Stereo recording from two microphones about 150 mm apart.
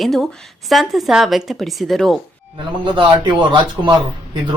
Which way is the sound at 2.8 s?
30° right (ahead or behind).